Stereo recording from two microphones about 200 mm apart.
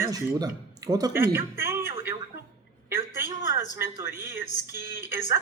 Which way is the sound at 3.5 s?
10° right (ahead or behind).